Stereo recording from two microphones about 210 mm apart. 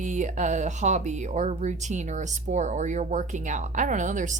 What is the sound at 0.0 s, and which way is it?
Speech, 35° right (ahead or behind).